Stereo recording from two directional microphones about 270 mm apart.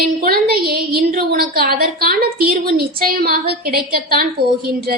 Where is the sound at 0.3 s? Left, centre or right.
Right.